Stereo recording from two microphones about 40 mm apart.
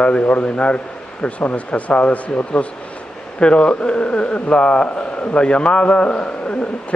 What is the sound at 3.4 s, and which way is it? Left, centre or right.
Speech, left.